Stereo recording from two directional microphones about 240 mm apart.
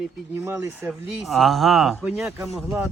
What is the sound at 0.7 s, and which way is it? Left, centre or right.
Speech, centre.